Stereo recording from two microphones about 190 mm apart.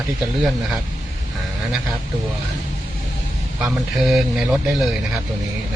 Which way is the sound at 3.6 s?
5° right (ahead or behind).